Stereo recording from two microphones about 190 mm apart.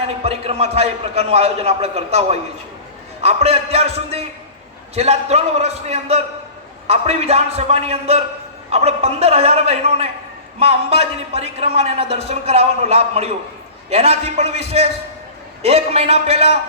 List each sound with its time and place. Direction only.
0.2 s a man's voice: 30° right (ahead or behind)
14.4 s music: 60° left (ahead or behind)
15.6 s a man's voice: 35° right (ahead or behind)